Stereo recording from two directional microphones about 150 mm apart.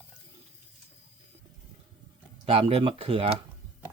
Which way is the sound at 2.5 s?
40° right (ahead or behind).